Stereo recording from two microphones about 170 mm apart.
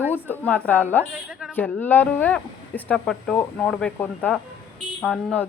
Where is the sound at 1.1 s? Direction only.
5° right (ahead or behind).